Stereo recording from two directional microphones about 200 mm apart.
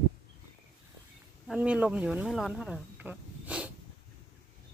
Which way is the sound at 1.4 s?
5° right (ahead or behind).